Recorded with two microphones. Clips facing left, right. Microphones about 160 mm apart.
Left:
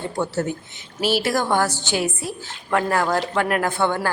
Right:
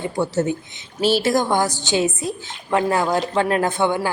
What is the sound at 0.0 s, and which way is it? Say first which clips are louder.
A woman's voice: right 3 dB; 15° right (ahead or behind).